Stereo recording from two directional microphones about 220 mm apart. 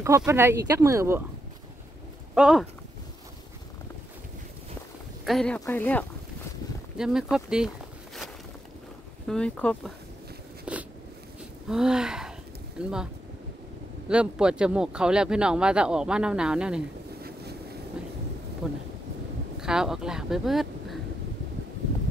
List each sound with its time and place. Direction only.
0.0 s speech: 10° right (ahead or behind)
2.3 s speech: 5° right (ahead or behind)
5.2 s speech: centre (ahead or behind)
7.0 s speech: 5° right (ahead or behind)
9.3 s speech: 5° left (ahead or behind)
10.6 s a sound: 5° right (ahead or behind)
11.7 s speech: 5° right (ahead or behind)
14.0 s speech: 5° right (ahead or behind)
17.2 s boat: 45° right (ahead or behind)
18.6 s speech: centre (ahead or behind)